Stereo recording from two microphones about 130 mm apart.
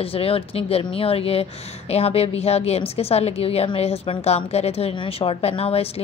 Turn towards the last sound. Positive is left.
turn(degrees=50)  # may be behind; listen again after turning